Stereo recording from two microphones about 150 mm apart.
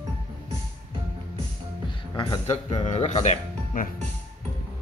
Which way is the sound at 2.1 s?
30° left (ahead or behind).